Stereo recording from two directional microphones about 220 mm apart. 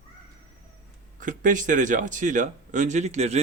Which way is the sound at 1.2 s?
35° right (ahead or behind).